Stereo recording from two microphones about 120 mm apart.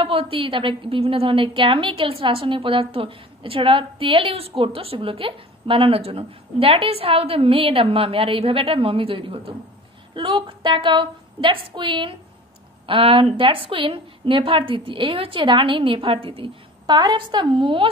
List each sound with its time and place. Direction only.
0.0 s a woman's voice: 50° right (ahead or behind)